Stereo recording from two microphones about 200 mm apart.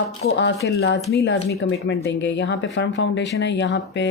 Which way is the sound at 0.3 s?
60° left (ahead or behind).